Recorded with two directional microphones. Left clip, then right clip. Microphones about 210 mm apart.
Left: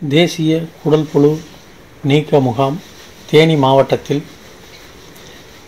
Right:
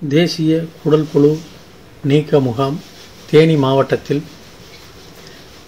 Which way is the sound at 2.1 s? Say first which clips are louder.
Left 1 dB; 5° left (ahead or behind).